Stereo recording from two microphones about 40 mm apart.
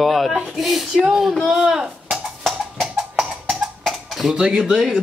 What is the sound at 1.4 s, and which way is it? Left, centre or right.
Chop, centre.